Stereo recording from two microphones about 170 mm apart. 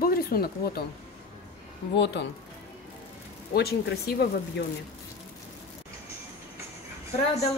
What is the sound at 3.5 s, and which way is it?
Speech, 65° left (ahead or behind).